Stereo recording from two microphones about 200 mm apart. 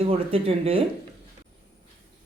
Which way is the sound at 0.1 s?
30° right (ahead or behind).